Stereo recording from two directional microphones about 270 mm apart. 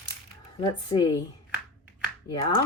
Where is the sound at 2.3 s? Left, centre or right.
Centre.